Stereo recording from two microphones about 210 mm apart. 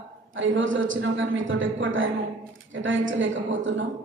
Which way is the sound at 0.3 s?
65° right (ahead or behind).